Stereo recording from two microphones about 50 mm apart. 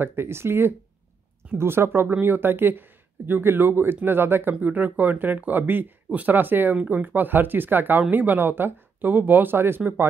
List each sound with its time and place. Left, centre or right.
0.0 s speech: right